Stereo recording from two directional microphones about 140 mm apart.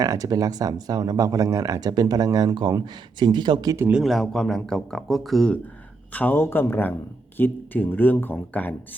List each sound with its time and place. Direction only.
0.0 s speech: 25° right (ahead or behind)
3.8 s speech: 5° right (ahead or behind)
6.1 s speech: 15° left (ahead or behind)